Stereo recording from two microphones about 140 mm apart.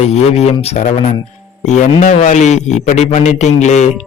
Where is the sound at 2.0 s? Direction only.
60° left (ahead or behind).